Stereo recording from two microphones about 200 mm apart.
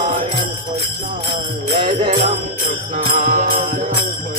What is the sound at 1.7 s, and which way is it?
Jingle bell, 30° right (ahead or behind).